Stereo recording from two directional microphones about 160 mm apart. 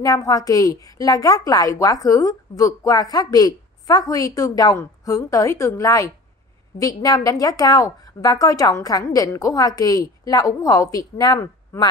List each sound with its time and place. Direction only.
0.0 s a woman's voice: 20° left (ahead or behind)